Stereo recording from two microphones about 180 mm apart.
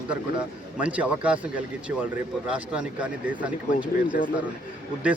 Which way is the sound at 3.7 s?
50° left (ahead or behind).